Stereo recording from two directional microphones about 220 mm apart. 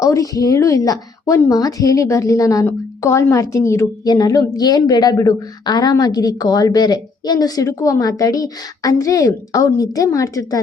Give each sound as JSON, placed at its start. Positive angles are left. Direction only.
{"t": 0.0, "sound": "speech", "side_deg": 15}